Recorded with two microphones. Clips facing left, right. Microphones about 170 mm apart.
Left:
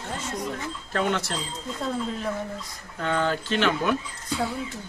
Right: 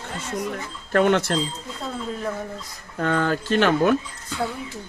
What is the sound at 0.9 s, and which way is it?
Speech, 60° right (ahead or behind).